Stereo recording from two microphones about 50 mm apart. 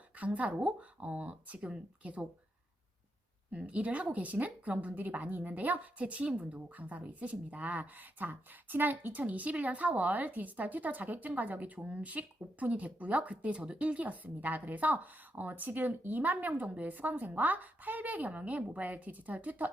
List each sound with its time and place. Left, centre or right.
0.2 s speech: right
3.5 s a woman's voice: right